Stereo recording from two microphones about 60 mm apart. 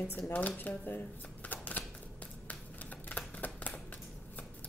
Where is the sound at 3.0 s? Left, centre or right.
Left.